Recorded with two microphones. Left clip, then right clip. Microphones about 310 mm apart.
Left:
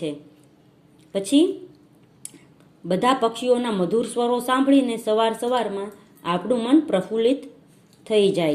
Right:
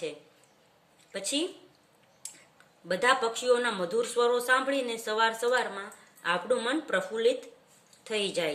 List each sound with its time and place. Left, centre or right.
1.1 s speech: centre
2.8 s a woman's voice: centre